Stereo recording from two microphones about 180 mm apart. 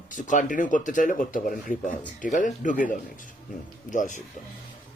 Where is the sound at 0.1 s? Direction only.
45° left (ahead or behind).